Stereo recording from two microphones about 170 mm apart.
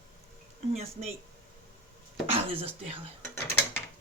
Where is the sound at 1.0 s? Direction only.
45° right (ahead or behind).